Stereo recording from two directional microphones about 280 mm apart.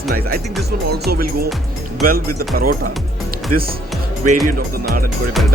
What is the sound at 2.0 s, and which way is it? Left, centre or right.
Speech, right.